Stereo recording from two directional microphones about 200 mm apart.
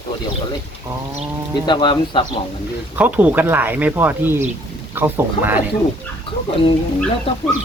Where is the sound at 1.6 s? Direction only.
20° left (ahead or behind).